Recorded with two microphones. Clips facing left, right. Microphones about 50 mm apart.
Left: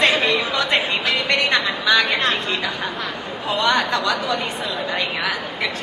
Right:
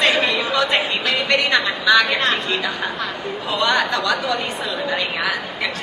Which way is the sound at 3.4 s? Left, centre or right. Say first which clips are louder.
Even; left.